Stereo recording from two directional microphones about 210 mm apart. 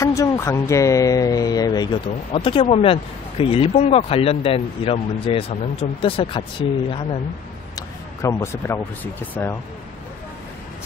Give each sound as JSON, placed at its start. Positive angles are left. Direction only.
{"t": 0.0, "sound": "speech", "side_deg": 15}
{"t": 7.7, "sound": "speech", "side_deg": 15}